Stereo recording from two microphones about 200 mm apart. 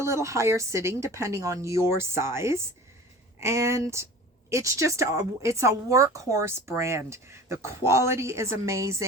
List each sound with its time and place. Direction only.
0.0 s speech: 15° right (ahead or behind)